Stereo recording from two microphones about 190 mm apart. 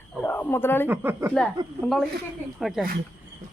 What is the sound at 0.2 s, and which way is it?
Wild animals, 10° left (ahead or behind).